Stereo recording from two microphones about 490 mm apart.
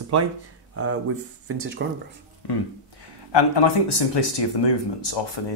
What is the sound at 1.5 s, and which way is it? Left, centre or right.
Speech, right.